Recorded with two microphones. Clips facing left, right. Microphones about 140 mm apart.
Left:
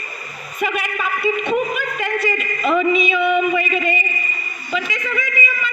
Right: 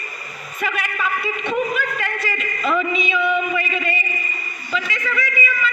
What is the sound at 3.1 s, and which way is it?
Speech, 20° left (ahead or behind).